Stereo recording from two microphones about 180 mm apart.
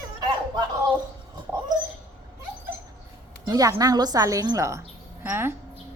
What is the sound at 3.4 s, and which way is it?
A woman's voice, 20° right (ahead or behind).